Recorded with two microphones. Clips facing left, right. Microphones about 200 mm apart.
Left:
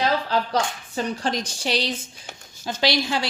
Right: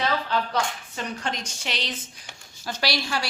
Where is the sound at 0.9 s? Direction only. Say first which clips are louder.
Left 7 dB; 35° left (ahead or behind).